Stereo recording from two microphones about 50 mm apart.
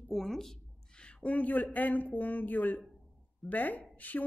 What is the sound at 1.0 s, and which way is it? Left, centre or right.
A woman's voice, left.